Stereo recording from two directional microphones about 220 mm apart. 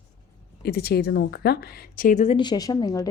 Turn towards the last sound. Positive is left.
turn(degrees=15)  # may be behind; listen again after turning